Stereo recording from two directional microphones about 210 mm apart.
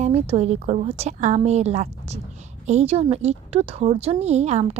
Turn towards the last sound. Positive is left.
turn(degrees=-30)  # may be behind; listen again after turning